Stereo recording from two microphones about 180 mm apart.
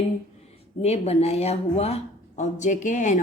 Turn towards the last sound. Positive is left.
turn(degrees=45)  # may be behind; listen again after turning